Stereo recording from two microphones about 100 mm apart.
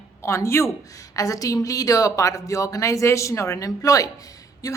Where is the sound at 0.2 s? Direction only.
30° left (ahead or behind).